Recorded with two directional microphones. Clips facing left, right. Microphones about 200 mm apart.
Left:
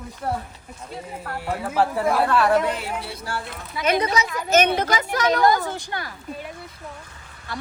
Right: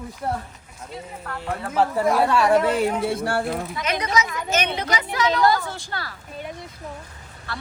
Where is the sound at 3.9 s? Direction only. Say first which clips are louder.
Left 4 dB; 30° left (ahead or behind).